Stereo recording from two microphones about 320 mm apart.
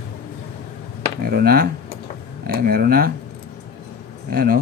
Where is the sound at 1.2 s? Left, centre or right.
Right.